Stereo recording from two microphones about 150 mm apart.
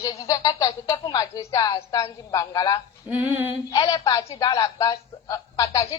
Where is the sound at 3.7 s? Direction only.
30° left (ahead or behind).